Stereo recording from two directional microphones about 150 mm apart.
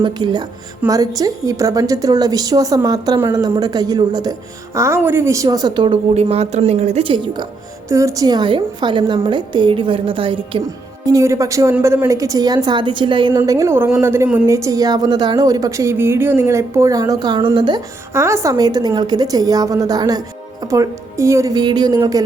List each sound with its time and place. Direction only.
0.0 s a woman's voice: 30° right (ahead or behind); by 3.4 s 15° right (ahead or behind)
3.4 s a woman's voice: 25° right (ahead or behind)
7.9 s a woman's voice: 20° right (ahead or behind); by 10.6 s 35° right (ahead or behind)
11.0 s a woman's voice: 20° right (ahead or behind)
18.1 s a woman's voice: 20° right (ahead or behind)